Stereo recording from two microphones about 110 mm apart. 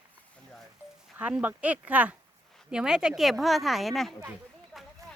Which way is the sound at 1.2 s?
15° right (ahead or behind).